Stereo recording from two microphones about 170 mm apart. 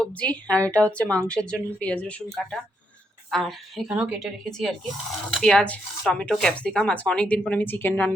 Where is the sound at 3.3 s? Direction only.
Centre (ahead or behind).